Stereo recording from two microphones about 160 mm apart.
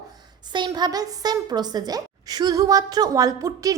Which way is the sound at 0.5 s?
25° right (ahead or behind).